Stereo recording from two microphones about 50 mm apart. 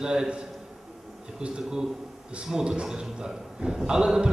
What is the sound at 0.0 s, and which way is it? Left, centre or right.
Speech, centre.